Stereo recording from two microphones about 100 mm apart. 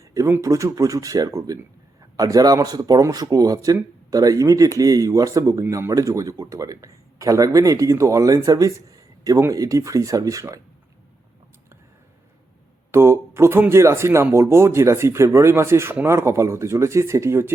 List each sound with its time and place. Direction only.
0.0 s a sound: 35° right (ahead or behind)
0.3 s speech: 30° right (ahead or behind)
12.9 s speech: 25° right (ahead or behind)